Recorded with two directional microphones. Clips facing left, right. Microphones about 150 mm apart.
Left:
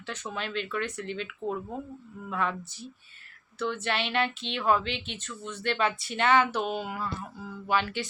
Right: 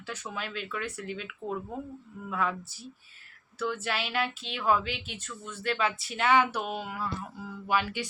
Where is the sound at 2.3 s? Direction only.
5° right (ahead or behind).